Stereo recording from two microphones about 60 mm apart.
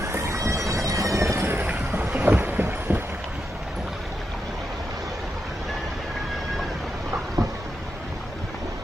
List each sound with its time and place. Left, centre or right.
0.0 s bagpipes: right
1.4 s train: right
2.0 s vehicle: right